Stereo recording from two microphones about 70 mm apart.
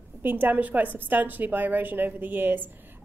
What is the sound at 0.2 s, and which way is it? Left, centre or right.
A woman's voice, right.